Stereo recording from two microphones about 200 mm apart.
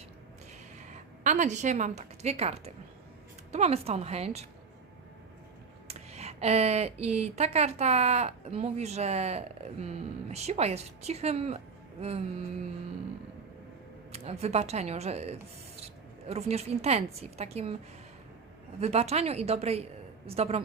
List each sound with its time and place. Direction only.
0.9 s a woman's voice: 35° right (ahead or behind)
5.9 s speech: 30° right (ahead or behind)
14.1 s speech: 30° right (ahead or behind)
18.8 s speech: 30° right (ahead or behind)